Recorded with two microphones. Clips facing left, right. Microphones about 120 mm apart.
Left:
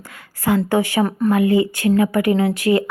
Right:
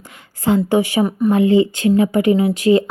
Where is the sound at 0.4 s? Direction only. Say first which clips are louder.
Right 2 dB; 20° right (ahead or behind).